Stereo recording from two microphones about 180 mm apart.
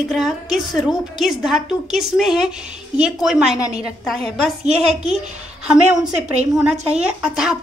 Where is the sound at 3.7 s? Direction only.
35° right (ahead or behind).